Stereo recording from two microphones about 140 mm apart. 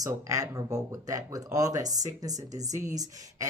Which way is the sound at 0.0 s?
25° right (ahead or behind).